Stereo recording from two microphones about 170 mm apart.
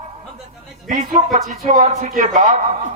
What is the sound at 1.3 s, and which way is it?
Speech, 40° right (ahead or behind).